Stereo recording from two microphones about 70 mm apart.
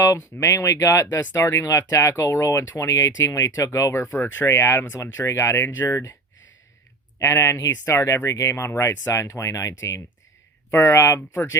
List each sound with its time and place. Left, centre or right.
0.0 s speech: left
4.0 s speech: left
7.2 s speech: left